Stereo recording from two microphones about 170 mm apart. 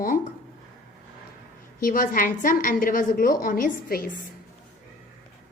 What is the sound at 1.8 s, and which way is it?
A woman's voice, 55° left (ahead or behind).